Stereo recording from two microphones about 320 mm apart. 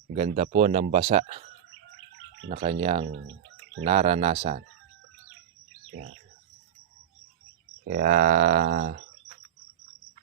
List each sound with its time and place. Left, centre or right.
0.1 s speech: right
2.5 s speech: right
7.9 s speech: right